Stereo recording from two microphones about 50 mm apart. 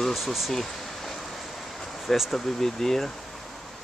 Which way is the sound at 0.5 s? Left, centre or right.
Centre.